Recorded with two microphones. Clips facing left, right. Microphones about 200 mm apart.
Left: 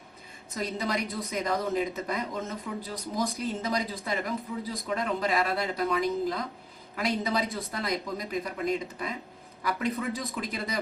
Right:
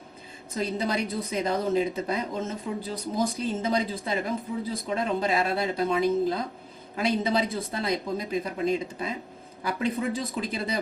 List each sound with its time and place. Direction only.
0.5 s a woman's voice: 30° right (ahead or behind)